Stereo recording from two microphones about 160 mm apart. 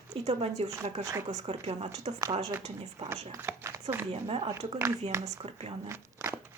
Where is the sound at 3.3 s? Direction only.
15° right (ahead or behind).